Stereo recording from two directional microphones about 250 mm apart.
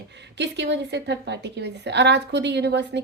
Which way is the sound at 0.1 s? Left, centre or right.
Right.